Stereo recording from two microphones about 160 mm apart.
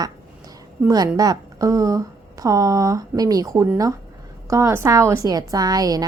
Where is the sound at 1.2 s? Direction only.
20° right (ahead or behind).